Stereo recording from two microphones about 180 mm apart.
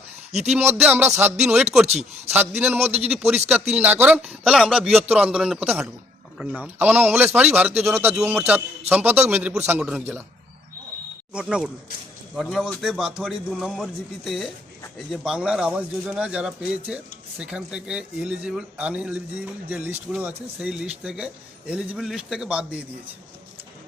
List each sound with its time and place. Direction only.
0.3 s a man's voice: 35° right (ahead or behind)
0.9 s speech: 10° right (ahead or behind)
1.9 s a man's voice: 35° right (ahead or behind)
3.1 s speech: 5° right (ahead or behind)
11.3 s speech: 5° right (ahead or behind)